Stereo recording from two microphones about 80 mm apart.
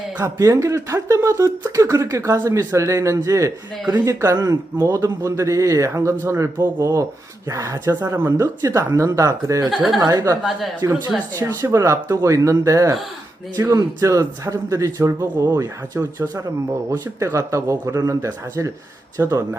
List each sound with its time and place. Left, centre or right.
0.2 s a man's voice: right
9.6 s speech: centre
10.0 s a man's voice: right